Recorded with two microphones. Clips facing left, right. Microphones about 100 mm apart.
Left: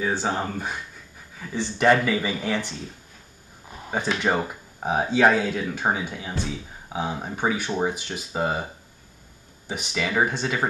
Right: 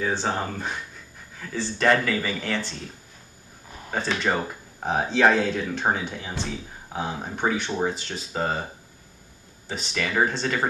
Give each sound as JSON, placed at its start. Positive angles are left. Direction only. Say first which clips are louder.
{"t": 0.0, "sound": "speech", "louder": "left 1 dB", "side_deg": 10}
{"t": 3.9, "sound": "speech", "louder": "left 1 dB", "side_deg": 15}
{"t": 9.7, "sound": "speech", "louder": "left 1 dB", "side_deg": 10}